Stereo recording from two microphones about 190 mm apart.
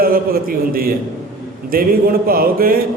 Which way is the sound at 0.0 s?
50° right (ahead or behind).